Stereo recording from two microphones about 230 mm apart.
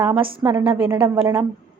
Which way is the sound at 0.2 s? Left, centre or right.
Right.